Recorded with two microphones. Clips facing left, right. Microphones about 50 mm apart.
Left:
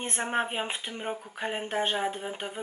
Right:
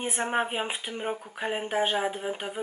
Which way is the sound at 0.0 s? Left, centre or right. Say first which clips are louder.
Right 2 dB; centre.